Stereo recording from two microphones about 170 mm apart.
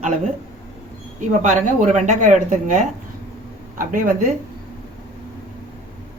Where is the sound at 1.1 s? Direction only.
50° right (ahead or behind).